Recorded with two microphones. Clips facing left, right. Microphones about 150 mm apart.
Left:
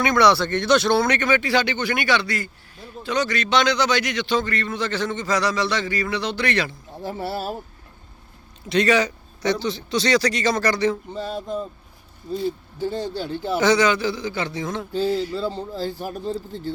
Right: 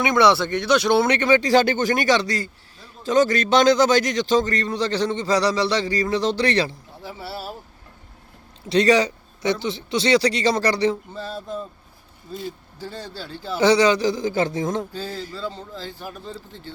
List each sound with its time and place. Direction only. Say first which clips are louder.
0.0 s speech: even; 20° right (ahead or behind)
0.9 s a man's voice: right 2 dB; 30° right (ahead or behind)
3.2 s a man's voice: right 4 dB; 45° right (ahead or behind)
7.0 s speech: left 6 dB; 50° left (ahead or behind)
8.7 s a man's voice: right 2 dB; 30° right (ahead or behind)
11.1 s a sound: left 3 dB; 15° left (ahead or behind)
12.8 s speech: left 8 dB; 25° left (ahead or behind)
13.6 s a man's voice: right 2 dB; 30° right (ahead or behind)
15.4 s a man's voice: left 5 dB; 30° left (ahead or behind)